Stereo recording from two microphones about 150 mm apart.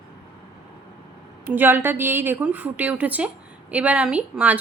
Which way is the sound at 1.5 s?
15° right (ahead or behind).